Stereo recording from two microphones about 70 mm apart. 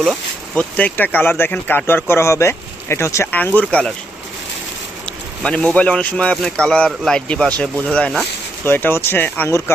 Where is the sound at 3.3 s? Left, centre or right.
Left.